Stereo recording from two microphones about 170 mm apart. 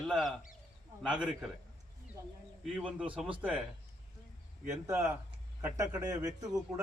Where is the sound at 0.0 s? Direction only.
Centre (ahead or behind).